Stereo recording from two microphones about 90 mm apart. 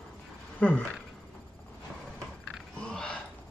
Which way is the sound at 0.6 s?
15° left (ahead or behind).